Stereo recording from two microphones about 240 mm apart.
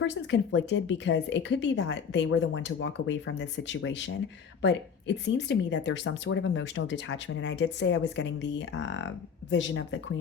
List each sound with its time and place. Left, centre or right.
0.0 s speech: left